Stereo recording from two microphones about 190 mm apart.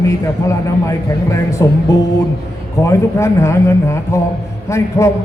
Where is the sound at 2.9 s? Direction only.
15° left (ahead or behind).